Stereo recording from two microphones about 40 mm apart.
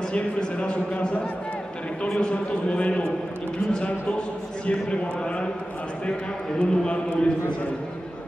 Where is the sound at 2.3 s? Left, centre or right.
Left.